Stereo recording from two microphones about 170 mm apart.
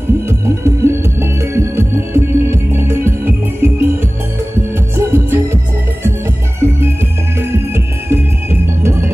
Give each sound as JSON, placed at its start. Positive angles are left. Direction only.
{"t": 0.3, "sound": "music", "side_deg": -15}